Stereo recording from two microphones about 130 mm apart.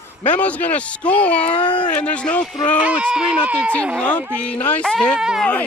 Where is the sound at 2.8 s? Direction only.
10° right (ahead or behind).